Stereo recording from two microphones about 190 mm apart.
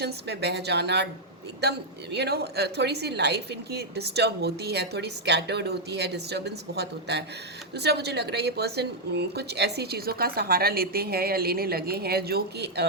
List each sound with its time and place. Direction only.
0.0 s speech: 60° right (ahead or behind)